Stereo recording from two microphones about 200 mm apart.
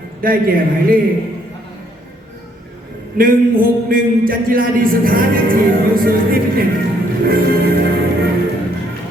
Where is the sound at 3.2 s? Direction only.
45° right (ahead or behind).